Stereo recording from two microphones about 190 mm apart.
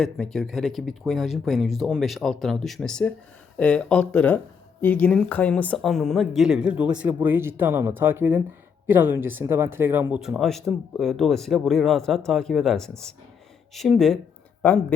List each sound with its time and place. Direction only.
0.0 s speech: centre (ahead or behind)